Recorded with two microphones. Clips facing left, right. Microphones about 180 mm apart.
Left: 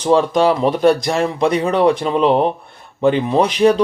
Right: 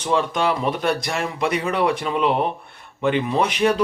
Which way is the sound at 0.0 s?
35° left (ahead or behind).